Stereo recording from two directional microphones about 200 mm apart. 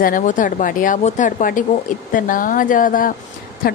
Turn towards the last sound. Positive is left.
turn(degrees=45)  # may be behind; listen again after turning